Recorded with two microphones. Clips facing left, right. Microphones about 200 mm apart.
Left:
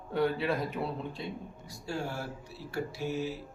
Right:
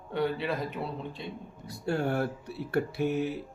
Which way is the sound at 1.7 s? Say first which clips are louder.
Right 8 dB; 60° right (ahead or behind).